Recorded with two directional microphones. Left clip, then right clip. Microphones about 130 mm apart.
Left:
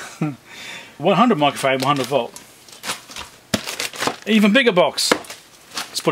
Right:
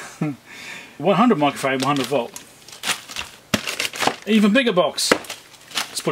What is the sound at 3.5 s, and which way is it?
Crumpling, centre (ahead or behind).